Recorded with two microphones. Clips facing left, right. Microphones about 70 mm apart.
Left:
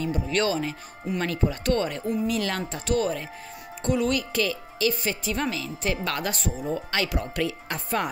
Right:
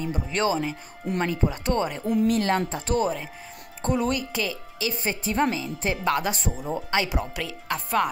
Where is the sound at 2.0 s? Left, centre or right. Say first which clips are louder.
Right 4 dB; right.